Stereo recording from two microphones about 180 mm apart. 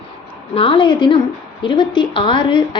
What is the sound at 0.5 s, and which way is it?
A woman's voice, 30° left (ahead or behind).